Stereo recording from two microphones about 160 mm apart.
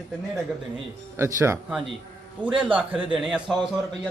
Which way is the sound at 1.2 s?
15° right (ahead or behind).